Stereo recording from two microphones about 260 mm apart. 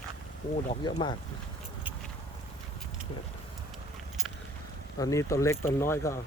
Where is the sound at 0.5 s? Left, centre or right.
Left.